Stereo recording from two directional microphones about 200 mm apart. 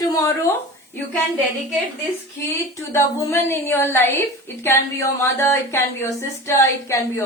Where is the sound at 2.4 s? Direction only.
15° left (ahead or behind).